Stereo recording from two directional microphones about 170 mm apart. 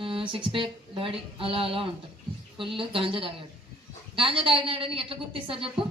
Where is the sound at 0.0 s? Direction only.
30° right (ahead or behind).